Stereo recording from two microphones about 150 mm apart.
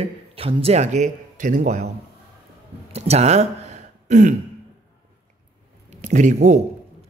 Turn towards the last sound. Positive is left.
turn(degrees=-55)  # may be behind; listen again after turning